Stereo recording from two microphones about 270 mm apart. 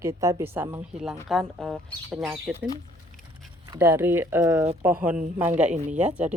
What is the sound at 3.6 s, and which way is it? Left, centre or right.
Speech, centre.